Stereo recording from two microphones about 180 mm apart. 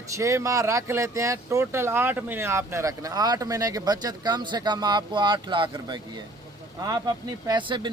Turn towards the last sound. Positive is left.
turn(degrees=-25)  # may be behind; listen again after turning